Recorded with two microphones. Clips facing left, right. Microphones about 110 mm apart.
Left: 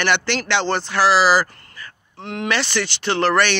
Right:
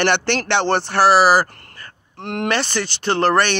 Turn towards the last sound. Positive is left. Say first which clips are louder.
# right 1 dB
turn(degrees=-45)  # may be behind; listen again after turning